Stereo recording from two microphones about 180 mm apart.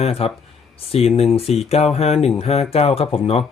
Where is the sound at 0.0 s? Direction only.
35° left (ahead or behind).